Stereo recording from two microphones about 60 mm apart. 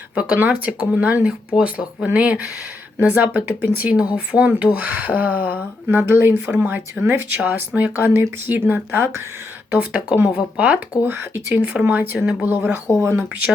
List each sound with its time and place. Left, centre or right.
0.1 s speech: centre
6.1 s speech: right
9.7 s speech: right
11.0 s speech: right
11.6 s speech: centre
12.5 s speech: right
13.0 s speech: right